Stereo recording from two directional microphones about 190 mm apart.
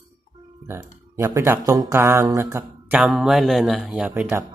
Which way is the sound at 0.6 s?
15° right (ahead or behind).